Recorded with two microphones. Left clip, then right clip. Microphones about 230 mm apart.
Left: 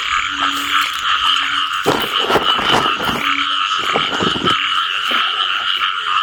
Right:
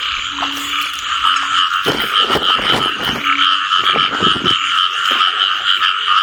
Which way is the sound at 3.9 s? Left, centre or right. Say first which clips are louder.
Right 3 dB; centre.